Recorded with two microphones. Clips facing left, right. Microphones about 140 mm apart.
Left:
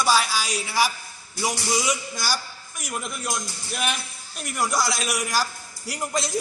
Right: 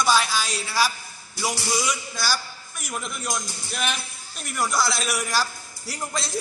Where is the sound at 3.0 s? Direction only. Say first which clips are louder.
Right 1 dB; 5° left (ahead or behind).